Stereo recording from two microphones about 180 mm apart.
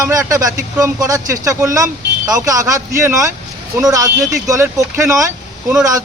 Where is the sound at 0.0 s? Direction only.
20° right (ahead or behind).